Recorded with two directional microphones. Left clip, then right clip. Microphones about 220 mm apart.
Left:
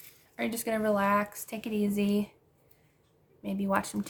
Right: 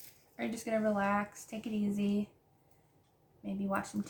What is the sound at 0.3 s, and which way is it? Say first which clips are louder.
Speech: left 4 dB; 45° left (ahead or behind).